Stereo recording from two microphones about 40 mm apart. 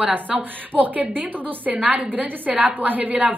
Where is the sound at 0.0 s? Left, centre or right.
Right.